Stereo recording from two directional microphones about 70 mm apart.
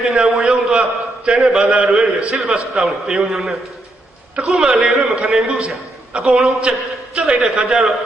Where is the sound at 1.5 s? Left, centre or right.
Centre.